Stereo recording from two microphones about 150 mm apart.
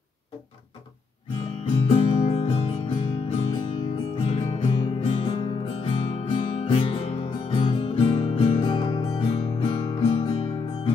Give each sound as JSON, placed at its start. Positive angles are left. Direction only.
{"t": 1.9, "sound": "music", "side_deg": 40}